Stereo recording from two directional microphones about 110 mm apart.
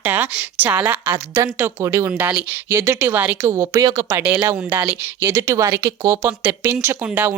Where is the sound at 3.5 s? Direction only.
35° right (ahead or behind).